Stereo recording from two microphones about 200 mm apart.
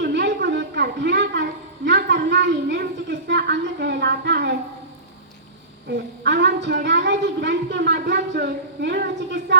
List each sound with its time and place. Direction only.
0.0 s a sound: 60° right (ahead or behind)
2.3 s a woman's voice: 60° right (ahead or behind)
5.9 s a woman's voice: 60° right (ahead or behind)